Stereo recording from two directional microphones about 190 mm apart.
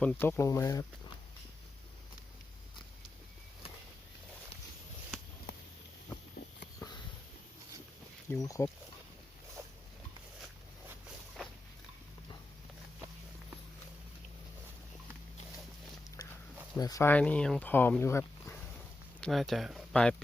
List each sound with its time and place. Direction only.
0.0 s speech: 10° left (ahead or behind)
6.7 s sniff: 20° left (ahead or behind)
8.3 s speech: 15° left (ahead or behind)
16.2 s dog: 20° left (ahead or behind)
16.7 s speech: 20° left (ahead or behind)
19.2 s speech: centre (ahead or behind)